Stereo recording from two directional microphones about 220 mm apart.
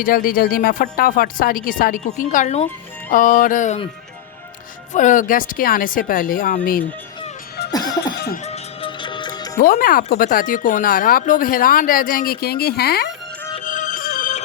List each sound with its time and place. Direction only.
0.0 s speech: 40° left (ahead or behind)
4.9 s speech: 35° left (ahead or behind)
7.7 s music: 15° left (ahead or behind)
8.1 s music: 45° left (ahead or behind)
8.4 s music: 25° left (ahead or behind)
9.6 s speech: 40° left (ahead or behind)
13.7 s music: 35° left (ahead or behind)